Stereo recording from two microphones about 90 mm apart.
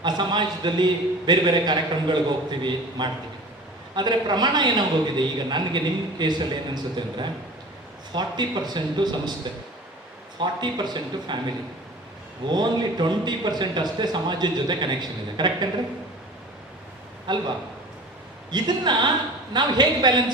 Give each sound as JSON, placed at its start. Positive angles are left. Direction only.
{"t": 0.0, "sound": "a man's voice", "side_deg": -55}
{"t": 12.5, "sound": "a man's voice", "side_deg": -55}
{"t": 17.3, "sound": "a man's voice", "side_deg": -55}
{"t": 18.5, "sound": "a man's voice", "side_deg": -55}